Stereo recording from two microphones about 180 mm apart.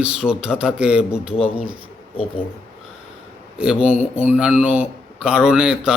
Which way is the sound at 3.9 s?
40° left (ahead or behind).